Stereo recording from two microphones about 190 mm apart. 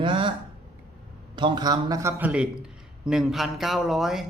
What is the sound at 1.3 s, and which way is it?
Speech, 25° right (ahead or behind).